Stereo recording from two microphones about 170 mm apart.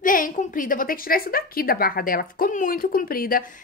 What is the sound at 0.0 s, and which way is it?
A woman's voice, 55° left (ahead or behind).